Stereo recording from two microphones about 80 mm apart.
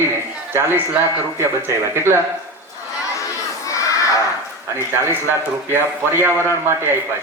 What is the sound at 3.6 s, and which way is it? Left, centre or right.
Crowd, left.